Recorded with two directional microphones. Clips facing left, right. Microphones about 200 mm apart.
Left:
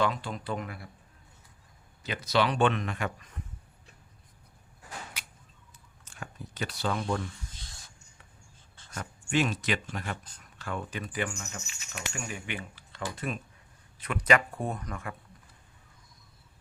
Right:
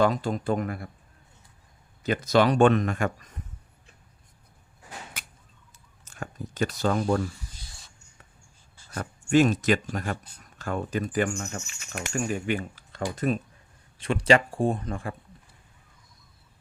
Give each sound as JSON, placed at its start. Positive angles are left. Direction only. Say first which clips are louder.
{"t": 0.0, "sound": "speech", "louder": "right 6 dB", "side_deg": -45}
{"t": 2.0, "sound": "speech", "louder": "right 6 dB", "side_deg": -45}
{"t": 5.2, "sound": "arrow", "louder": "right 3 dB", "side_deg": -50}
{"t": 6.1, "sound": "speech", "louder": "right 6 dB", "side_deg": -45}
{"t": 9.0, "sound": "speech", "louder": "right 8 dB", "side_deg": -45}
{"t": 14.0, "sound": "speech", "louder": "right 5 dB", "side_deg": -30}